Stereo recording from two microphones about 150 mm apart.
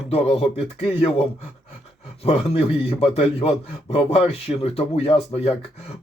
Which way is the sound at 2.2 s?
40° left (ahead or behind).